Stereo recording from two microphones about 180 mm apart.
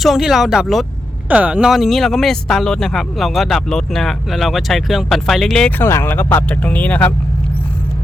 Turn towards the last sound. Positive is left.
turn(degrees=10)  # may be behind; listen again after turning